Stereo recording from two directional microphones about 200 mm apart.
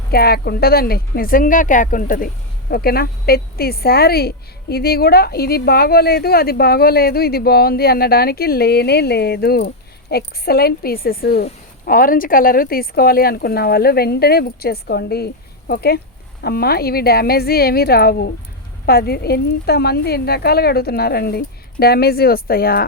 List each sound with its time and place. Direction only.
0.1 s speech: 50° left (ahead or behind)